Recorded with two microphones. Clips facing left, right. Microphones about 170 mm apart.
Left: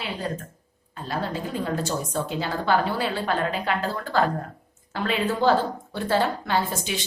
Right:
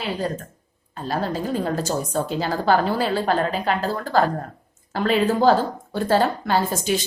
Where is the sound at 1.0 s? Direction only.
40° right (ahead or behind).